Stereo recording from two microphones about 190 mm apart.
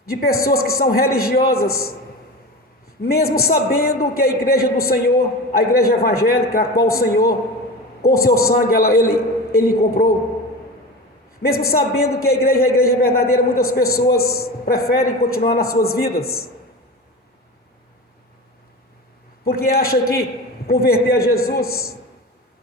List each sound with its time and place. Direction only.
0.1 s a man's voice: 55° left (ahead or behind)
3.0 s a man's voice: 55° left (ahead or behind)
11.4 s a man's voice: 50° left (ahead or behind)
19.5 s a man's voice: 55° left (ahead or behind)